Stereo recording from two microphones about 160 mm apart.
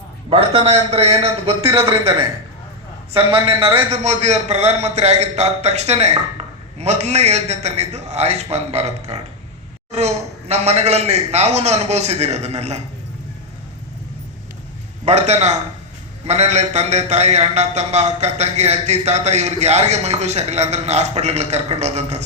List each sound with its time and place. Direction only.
0.3 s a man's voice: 35° right (ahead or behind)
3.1 s a man's voice: 35° right (ahead or behind)
15.0 s a man's voice: 45° right (ahead or behind)